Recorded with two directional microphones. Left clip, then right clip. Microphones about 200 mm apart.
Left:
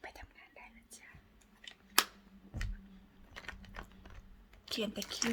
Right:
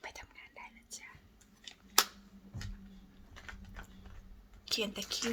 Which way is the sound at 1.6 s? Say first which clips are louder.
Right 1 dB; 25° left (ahead or behind).